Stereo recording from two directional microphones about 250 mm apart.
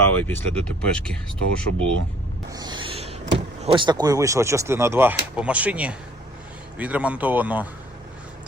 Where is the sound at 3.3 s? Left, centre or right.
Right.